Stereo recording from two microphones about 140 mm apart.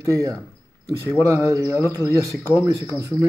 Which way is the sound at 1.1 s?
20° right (ahead or behind).